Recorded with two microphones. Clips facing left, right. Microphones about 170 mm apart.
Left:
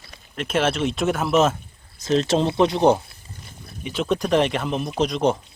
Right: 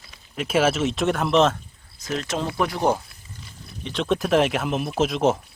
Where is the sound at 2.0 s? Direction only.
30° left (ahead or behind).